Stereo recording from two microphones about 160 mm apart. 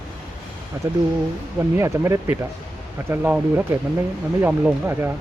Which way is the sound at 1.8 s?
15° right (ahead or behind).